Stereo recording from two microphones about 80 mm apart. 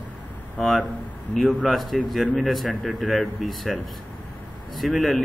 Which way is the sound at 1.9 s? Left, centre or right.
Centre.